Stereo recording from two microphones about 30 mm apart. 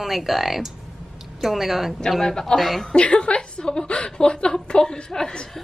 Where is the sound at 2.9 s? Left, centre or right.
Left.